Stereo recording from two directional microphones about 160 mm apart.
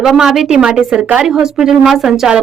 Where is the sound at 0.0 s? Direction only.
Centre (ahead or behind).